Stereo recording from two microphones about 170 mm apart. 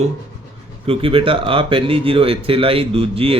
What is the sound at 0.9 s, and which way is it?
Speech, 30° right (ahead or behind).